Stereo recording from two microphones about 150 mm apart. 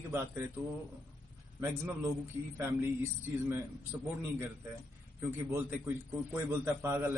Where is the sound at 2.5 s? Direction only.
15° right (ahead or behind).